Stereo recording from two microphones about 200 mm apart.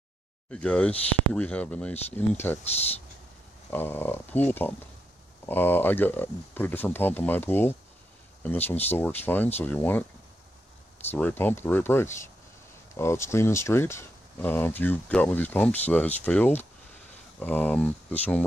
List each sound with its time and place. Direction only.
0.5 s speech: 5° left (ahead or behind)
3.7 s speech: 10° left (ahead or behind)
11.1 s speech: 10° left (ahead or behind)